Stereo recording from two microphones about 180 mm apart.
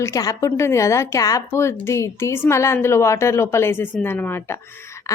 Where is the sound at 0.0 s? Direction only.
20° left (ahead or behind).